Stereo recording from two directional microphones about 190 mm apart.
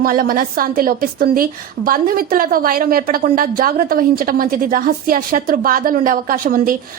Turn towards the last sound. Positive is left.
turn(degrees=-45)  # may be behind; listen again after turning